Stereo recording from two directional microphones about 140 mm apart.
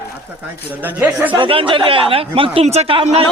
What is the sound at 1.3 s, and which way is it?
Speech, 40° right (ahead or behind).